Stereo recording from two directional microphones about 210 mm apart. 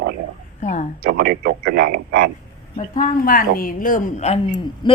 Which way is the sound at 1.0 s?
45° right (ahead or behind).